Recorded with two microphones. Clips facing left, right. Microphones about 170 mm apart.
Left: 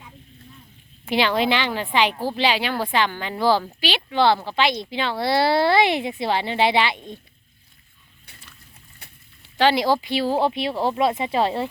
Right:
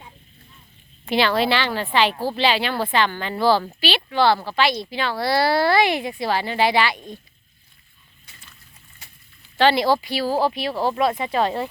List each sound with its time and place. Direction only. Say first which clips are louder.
1.0 s speech: right 1 dB; 15° left (ahead or behind)
8.3 s slosh: left 2 dB; 60° left (ahead or behind)
9.0 s a sound: left 2 dB; 60° left (ahead or behind)
9.6 s speech: right 1 dB; 15° left (ahead or behind)